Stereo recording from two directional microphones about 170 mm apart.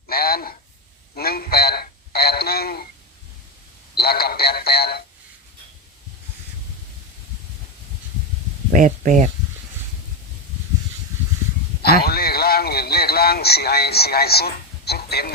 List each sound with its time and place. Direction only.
0.1 s a sound: 65° left (ahead or behind)
3.9 s radio: 65° left (ahead or behind)
8.7 s speech: 50° right (ahead or behind)
11.8 s radio: 65° left (ahead or behind)